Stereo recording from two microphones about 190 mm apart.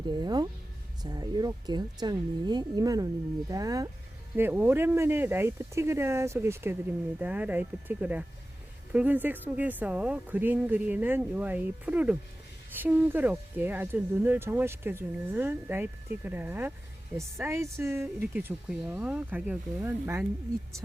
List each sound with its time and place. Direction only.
0.1 s speech: 20° right (ahead or behind)